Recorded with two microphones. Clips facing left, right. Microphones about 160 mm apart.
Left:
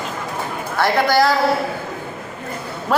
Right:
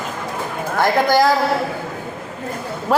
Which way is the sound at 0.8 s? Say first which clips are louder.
Right 1 dB; 15° right (ahead or behind).